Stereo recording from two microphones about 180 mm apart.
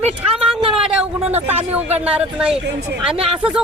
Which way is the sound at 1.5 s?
35° right (ahead or behind).